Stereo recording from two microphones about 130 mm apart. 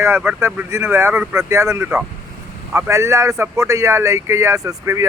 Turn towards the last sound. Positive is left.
turn(degrees=-25)  # may be behind; listen again after turning